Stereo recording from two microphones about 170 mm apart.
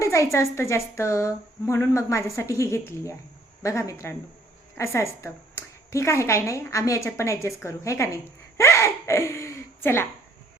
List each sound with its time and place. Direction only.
0.0 s a woman's voice: 15° left (ahead or behind)